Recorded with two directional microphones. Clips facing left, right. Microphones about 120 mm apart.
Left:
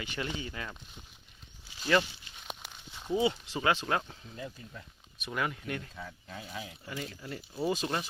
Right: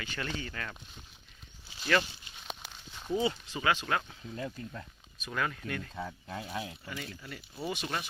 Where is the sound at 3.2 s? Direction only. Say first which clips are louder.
Left 2 dB; 30° left (ahead or behind).